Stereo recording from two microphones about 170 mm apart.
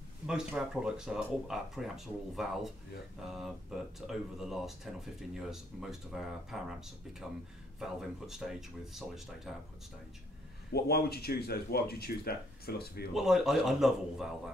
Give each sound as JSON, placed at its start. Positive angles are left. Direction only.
{"t": 0.3, "sound": "speech", "side_deg": -5}
{"t": 10.7, "sound": "speech", "side_deg": 70}
{"t": 13.1, "sound": "speech", "side_deg": 0}